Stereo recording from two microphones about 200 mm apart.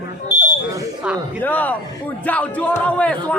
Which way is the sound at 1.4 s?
10° left (ahead or behind).